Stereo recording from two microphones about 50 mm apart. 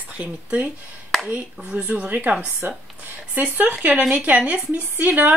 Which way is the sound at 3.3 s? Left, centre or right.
Right.